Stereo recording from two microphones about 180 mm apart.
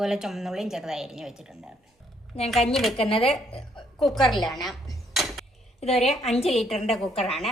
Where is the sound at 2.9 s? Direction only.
30° left (ahead or behind).